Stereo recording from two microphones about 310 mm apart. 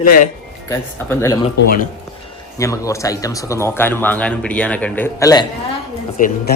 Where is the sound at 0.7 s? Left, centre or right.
Centre.